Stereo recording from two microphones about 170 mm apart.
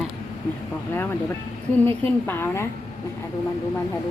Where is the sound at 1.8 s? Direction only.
10° left (ahead or behind).